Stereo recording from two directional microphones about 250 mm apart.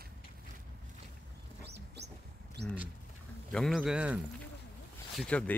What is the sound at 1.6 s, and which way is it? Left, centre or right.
Bird, right.